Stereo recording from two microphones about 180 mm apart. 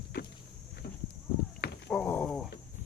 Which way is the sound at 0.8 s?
55° left (ahead or behind).